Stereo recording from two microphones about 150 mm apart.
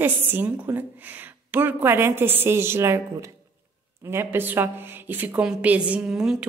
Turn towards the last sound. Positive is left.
turn(degrees=-5)  # may be behind; listen again after turning